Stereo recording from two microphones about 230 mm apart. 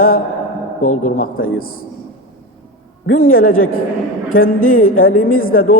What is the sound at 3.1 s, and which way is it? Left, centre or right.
A man's voice, left.